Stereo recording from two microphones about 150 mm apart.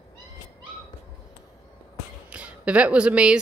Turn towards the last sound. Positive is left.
turn(degrees=-5)  # may be behind; listen again after turning